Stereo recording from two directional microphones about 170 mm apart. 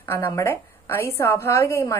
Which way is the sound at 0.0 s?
15° left (ahead or behind).